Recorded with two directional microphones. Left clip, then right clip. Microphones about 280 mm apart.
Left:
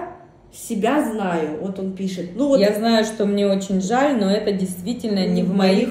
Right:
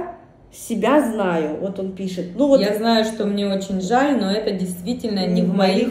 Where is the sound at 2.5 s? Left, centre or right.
Centre.